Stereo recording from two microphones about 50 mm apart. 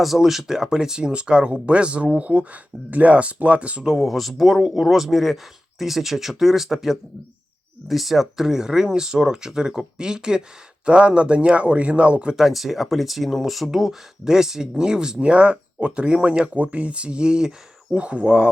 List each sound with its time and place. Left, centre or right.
0.0 s speech: centre; by 3.8 s right
3.8 s speech: centre; by 12.4 s right
12.4 s speech: centre; by 18.5 s right